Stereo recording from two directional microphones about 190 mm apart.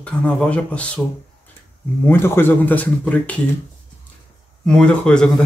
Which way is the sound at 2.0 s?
10° left (ahead or behind).